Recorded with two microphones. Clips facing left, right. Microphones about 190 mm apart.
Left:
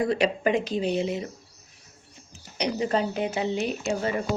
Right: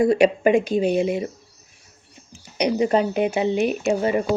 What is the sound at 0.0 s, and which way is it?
Speech, 15° right (ahead or behind).